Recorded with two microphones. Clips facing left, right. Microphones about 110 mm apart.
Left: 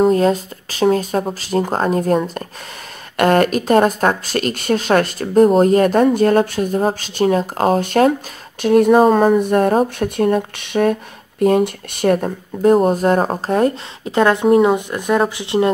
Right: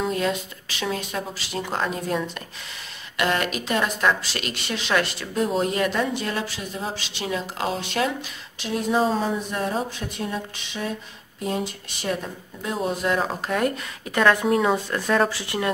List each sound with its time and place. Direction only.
0.0 s speech: 40° left (ahead or behind)